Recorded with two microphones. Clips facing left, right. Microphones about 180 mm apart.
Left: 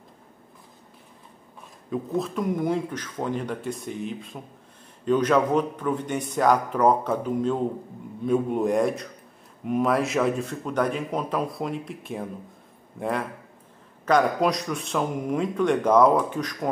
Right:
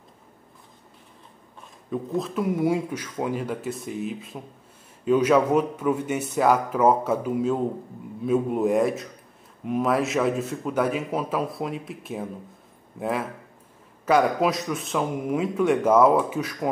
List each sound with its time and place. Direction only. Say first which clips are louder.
1.9 s a man's voice: even; centre (ahead or behind)